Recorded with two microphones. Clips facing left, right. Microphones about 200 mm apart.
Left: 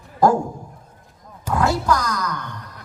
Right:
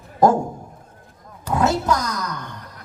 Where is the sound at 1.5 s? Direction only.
25° right (ahead or behind).